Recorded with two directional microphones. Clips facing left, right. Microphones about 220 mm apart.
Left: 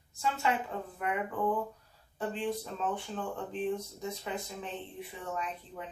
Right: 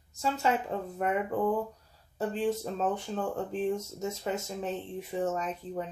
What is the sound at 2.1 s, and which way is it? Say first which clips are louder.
Speech: right 4 dB; 40° right (ahead or behind).